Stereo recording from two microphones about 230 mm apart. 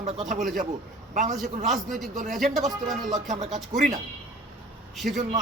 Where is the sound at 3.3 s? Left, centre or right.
Right.